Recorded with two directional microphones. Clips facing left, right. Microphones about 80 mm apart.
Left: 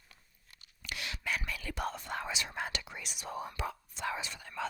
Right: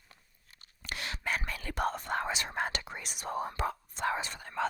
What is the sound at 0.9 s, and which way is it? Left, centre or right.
Whispering, right.